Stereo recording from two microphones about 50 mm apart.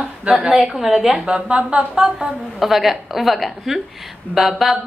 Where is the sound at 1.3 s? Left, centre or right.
Right.